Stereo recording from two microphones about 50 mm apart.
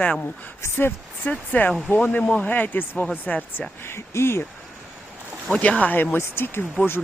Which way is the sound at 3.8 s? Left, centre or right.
Left.